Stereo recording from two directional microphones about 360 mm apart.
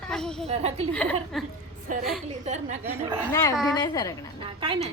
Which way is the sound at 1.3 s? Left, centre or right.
Centre.